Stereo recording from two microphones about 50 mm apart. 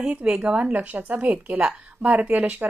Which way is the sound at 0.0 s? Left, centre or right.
Centre.